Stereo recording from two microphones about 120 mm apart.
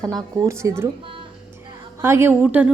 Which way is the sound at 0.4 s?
25° right (ahead or behind).